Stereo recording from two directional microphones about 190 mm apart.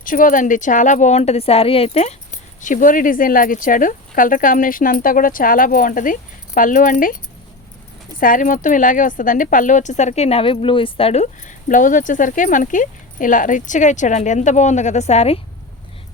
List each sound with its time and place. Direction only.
0.0 s speech: 45° left (ahead or behind)
8.2 s speech: 45° left (ahead or behind)